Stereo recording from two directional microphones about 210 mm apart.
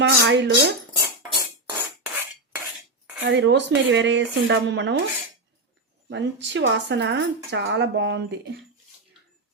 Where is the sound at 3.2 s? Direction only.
60° right (ahead or behind).